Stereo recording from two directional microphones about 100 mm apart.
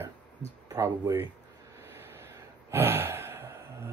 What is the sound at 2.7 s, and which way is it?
Gasp, 20° right (ahead or behind).